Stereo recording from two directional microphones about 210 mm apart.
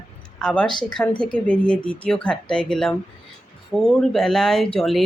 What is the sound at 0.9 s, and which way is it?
Speech, 5° left (ahead or behind).